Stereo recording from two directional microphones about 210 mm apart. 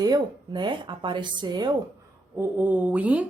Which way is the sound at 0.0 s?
20° right (ahead or behind).